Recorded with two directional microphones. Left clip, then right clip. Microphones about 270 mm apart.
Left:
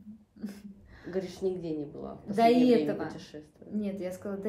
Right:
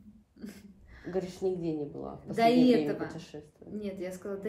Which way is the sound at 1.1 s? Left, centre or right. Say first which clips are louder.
Even; centre.